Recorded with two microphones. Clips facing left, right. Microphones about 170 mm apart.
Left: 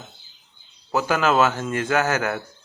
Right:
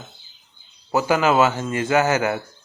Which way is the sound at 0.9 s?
10° right (ahead or behind).